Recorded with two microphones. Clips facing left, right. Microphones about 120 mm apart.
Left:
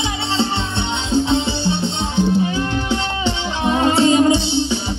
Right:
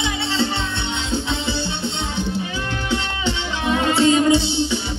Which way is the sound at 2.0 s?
25° left (ahead or behind).